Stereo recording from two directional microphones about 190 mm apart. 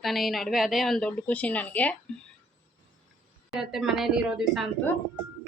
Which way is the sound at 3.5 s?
Centre (ahead or behind).